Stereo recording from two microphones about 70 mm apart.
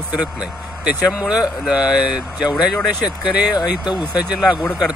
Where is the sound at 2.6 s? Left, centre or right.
Centre.